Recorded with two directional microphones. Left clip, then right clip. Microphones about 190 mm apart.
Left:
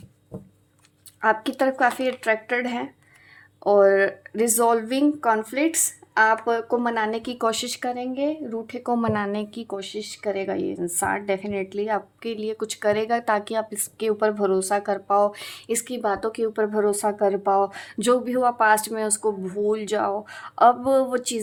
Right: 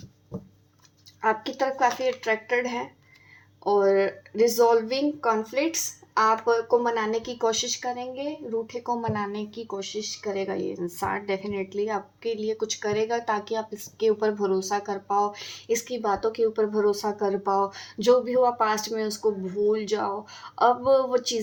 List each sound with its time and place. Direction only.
1.2 s speech: 45° left (ahead or behind)